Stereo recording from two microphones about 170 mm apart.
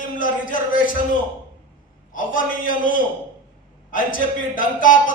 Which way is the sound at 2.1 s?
50° left (ahead or behind).